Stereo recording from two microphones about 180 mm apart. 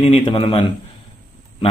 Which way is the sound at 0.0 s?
30° left (ahead or behind).